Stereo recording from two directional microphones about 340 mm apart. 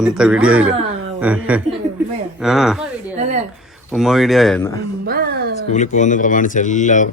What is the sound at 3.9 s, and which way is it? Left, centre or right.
Speech, centre.